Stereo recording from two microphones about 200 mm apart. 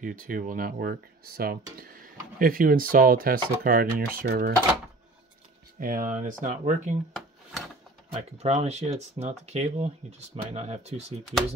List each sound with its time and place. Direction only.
0.0 s speech: 40° right (ahead or behind)
5.8 s speech: 45° right (ahead or behind)
8.1 s speech: 35° right (ahead or behind)